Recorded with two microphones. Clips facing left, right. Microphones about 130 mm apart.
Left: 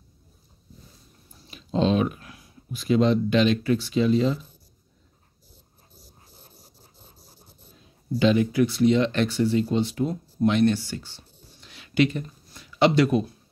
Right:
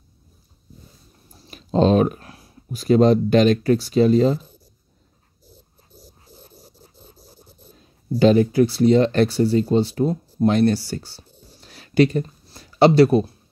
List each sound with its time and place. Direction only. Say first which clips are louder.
1.5 s speech: right 6 dB; 45° right (ahead or behind)
8.2 s speech: right 5 dB; 40° right (ahead or behind)